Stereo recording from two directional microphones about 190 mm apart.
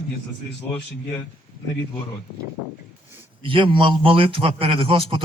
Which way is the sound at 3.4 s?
25° right (ahead or behind).